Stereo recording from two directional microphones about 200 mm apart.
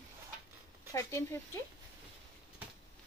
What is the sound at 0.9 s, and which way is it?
Speech, 15° left (ahead or behind).